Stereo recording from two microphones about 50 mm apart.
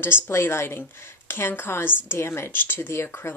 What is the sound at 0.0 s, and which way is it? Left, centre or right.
Speech, left.